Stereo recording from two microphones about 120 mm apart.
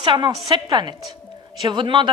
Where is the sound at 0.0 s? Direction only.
40° right (ahead or behind).